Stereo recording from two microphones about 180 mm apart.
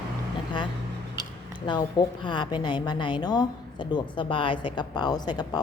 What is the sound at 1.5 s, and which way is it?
A woman's voice, 25° left (ahead or behind).